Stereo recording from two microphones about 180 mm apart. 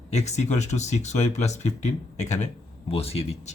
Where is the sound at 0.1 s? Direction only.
40° left (ahead or behind).